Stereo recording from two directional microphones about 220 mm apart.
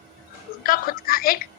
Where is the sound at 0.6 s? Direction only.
40° left (ahead or behind).